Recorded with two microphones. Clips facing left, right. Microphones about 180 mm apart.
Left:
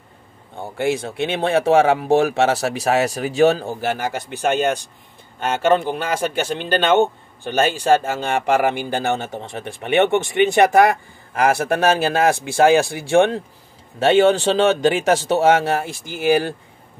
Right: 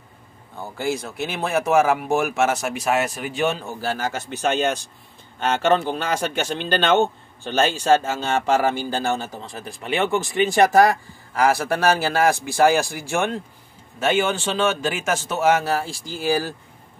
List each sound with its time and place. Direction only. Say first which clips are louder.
0.6 s a man's voice: left 4 dB; 25° left (ahead or behind)
3.8 s a man's voice: right 1 dB; 15° left (ahead or behind)